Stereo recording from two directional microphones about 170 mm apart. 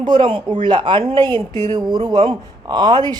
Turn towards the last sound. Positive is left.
turn(degrees=-25)  # may be behind; listen again after turning